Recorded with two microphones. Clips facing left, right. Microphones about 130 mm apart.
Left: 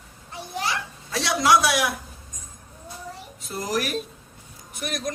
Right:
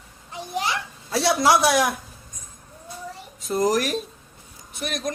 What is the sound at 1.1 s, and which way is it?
Speech, 35° right (ahead or behind).